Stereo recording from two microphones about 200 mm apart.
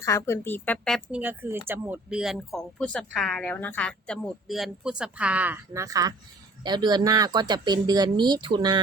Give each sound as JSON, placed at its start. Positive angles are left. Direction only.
{"t": 0.0, "sound": "a woman's voice", "side_deg": 15}
{"t": 1.2, "sound": "speech", "side_deg": -10}